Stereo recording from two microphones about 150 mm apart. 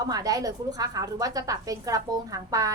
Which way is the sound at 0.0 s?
25° right (ahead or behind).